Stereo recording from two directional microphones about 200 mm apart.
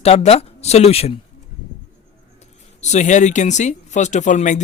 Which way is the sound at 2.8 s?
35° left (ahead or behind).